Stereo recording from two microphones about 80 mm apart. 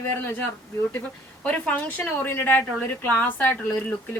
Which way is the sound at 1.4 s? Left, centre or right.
Centre.